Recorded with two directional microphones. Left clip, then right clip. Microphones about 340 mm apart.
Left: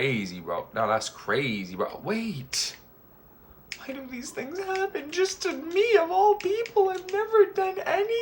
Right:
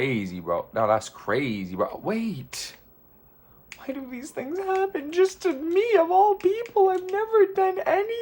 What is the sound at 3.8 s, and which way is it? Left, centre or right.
A woman's voice, right.